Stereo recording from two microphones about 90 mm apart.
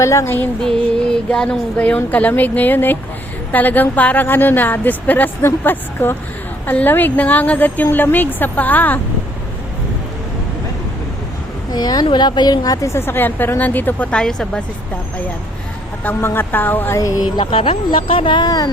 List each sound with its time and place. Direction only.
0.0 s music: 35° left (ahead or behind)
0.6 s a sound: 5° left (ahead or behind)
2.0 s a woman's voice: 20° left (ahead or behind)
11.7 s a woman's voice: 50° left (ahead or behind); by 14.6 s 10° left (ahead or behind)
16.0 s a woman's voice: 25° left (ahead or behind)
17.0 s music: 40° left (ahead or behind)
17.4 s speech: 90° left; by 18.7 s 45° left (ahead or behind)